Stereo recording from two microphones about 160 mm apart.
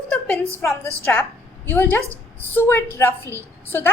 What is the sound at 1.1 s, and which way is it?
A woman's voice, 15° left (ahead or behind).